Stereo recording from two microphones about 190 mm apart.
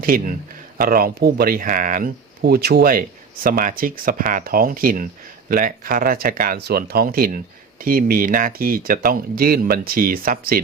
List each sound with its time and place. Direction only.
0.0 s speech: 50° right (ahead or behind)